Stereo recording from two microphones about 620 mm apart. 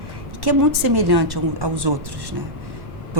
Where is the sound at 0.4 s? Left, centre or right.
Right.